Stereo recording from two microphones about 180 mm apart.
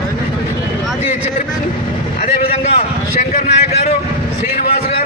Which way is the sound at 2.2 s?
35° left (ahead or behind).